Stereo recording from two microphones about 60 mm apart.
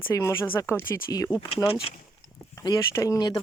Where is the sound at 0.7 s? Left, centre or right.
Left.